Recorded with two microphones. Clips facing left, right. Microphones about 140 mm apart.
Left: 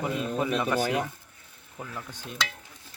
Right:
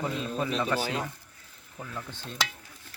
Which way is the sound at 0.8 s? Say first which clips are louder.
Left 4 dB; 70° left (ahead or behind).